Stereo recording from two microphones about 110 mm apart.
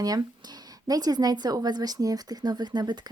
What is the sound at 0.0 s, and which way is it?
Speech, 35° right (ahead or behind).